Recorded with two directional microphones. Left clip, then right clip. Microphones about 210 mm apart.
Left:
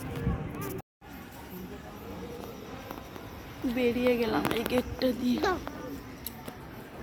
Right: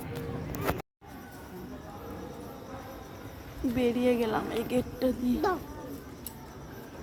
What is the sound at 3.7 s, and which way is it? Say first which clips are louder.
A woman's voice: even; 5° right (ahead or behind).